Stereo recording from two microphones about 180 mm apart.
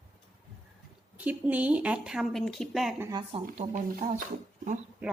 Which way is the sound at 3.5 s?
45° right (ahead or behind).